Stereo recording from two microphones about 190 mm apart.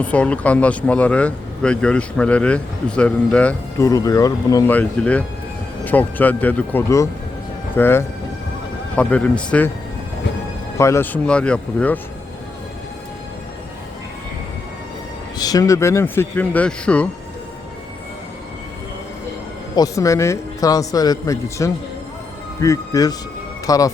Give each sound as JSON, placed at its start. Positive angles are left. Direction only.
{"t": 0.0, "sound": "speech", "side_deg": 5}
{"t": 3.8, "sound": "speech", "side_deg": 20}
{"t": 10.8, "sound": "speech", "side_deg": 15}
{"t": 15.4, "sound": "speech", "side_deg": 20}
{"t": 19.7, "sound": "speech", "side_deg": 20}